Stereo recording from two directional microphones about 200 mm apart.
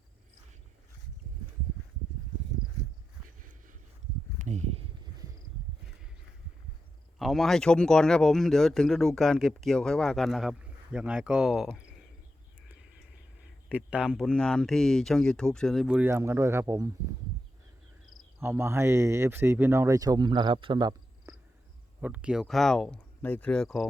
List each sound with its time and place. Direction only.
4.4 s speech: 35° right (ahead or behind)
7.2 s speech: centre (ahead or behind)
13.7 s speech: 5° right (ahead or behind)
18.4 s speech: 10° right (ahead or behind)
22.0 s speech: 5° right (ahead or behind)